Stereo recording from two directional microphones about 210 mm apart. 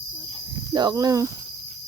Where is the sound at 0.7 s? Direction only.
20° right (ahead or behind).